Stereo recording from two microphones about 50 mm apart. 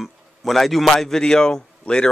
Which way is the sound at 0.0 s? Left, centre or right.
Centre.